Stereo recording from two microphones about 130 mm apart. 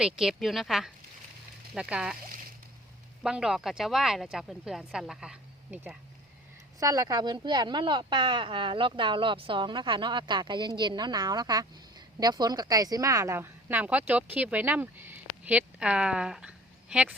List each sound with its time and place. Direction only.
0.0 s speech: 5° right (ahead or behind)
3.2 s speech: 5° right (ahead or behind)
6.7 s speech: 25° right (ahead or behind); by 17.2 s 10° right (ahead or behind)